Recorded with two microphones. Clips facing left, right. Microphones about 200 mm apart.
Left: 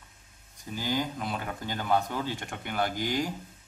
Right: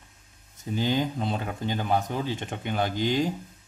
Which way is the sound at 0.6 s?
20° right (ahead or behind).